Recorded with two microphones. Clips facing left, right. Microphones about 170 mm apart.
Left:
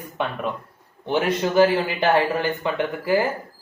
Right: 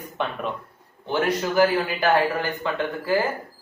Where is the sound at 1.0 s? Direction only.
20° left (ahead or behind).